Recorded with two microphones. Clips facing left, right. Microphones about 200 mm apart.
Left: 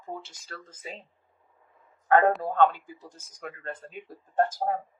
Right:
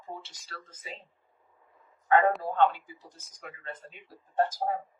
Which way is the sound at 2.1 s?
45° left (ahead or behind).